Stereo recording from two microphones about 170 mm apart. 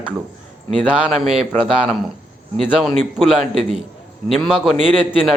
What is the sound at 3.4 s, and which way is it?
Speech, 40° right (ahead or behind).